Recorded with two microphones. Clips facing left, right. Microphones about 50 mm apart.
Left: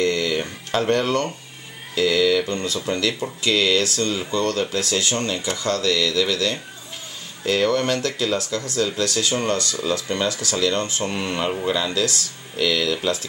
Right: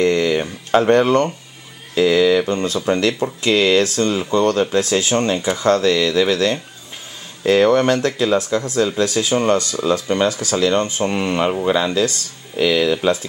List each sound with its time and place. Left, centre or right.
0.0 s a sound: right
2.0 s speech: centre
3.4 s speech: centre